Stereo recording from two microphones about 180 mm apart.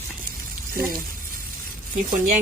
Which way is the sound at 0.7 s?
50° right (ahead or behind).